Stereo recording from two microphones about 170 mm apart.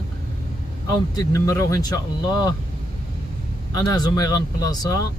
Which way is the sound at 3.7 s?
20° left (ahead or behind).